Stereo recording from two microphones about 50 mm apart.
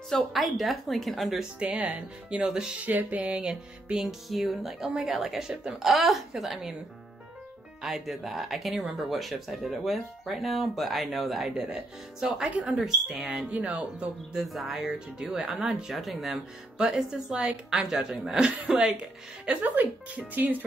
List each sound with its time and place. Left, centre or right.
0.3 s speech: centre
1.7 s speech: right
2.4 s a woman's voice: centre
2.8 s speech: right
3.3 s a woman's voice: centre
4.7 s a woman's voice: centre
7.8 s speech: centre
11.7 s a woman's voice: centre
13.5 s speech: right
14.3 s a woman's voice: centre
15.7 s speech: centre
16.7 s a woman's voice: centre
18.8 s speech: right
19.6 s speech: right